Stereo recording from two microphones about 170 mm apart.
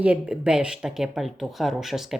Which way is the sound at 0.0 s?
5° right (ahead or behind).